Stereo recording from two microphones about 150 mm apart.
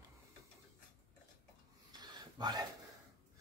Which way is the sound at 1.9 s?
30° right (ahead or behind).